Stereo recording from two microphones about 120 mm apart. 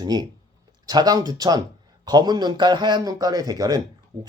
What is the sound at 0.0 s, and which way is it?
Speech, 35° right (ahead or behind).